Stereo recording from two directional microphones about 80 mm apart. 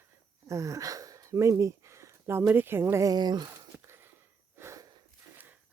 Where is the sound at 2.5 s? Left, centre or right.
Right.